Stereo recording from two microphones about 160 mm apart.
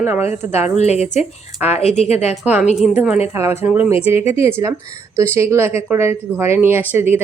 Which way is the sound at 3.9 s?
40° left (ahead or behind).